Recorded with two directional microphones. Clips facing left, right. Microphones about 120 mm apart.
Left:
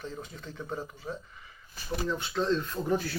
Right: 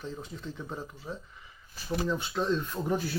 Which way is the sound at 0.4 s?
5° right (ahead or behind).